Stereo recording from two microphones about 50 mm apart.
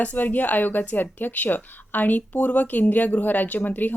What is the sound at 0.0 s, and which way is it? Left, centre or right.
Speech, left.